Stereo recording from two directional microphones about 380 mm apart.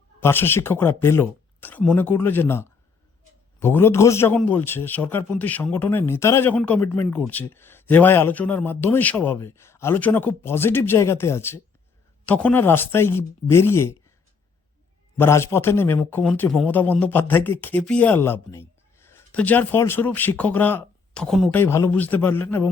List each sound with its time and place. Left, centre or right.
0.2 s speech: centre
15.2 s speech: centre